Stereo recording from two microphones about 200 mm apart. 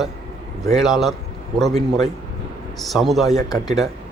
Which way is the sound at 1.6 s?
30° right (ahead or behind).